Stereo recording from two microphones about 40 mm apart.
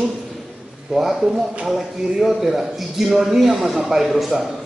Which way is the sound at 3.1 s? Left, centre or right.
Centre.